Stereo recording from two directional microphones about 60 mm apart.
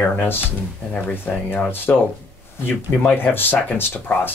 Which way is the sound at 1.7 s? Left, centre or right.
Left.